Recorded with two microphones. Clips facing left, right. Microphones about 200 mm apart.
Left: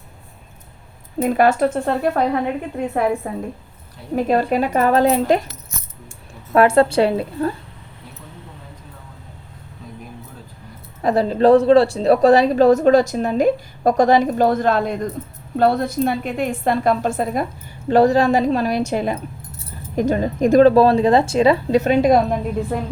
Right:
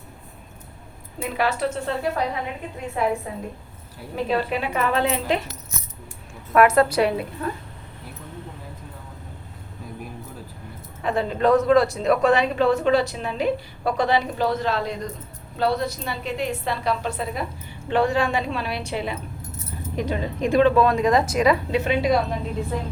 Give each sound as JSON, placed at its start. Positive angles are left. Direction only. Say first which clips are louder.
{"t": 1.2, "sound": "a woman's voice", "louder": "left 8 dB", "side_deg": 45}
{"t": 6.5, "sound": "a woman's voice", "louder": "left 3 dB", "side_deg": 30}
{"t": 11.0, "sound": "a woman's voice", "louder": "left 6 dB", "side_deg": 35}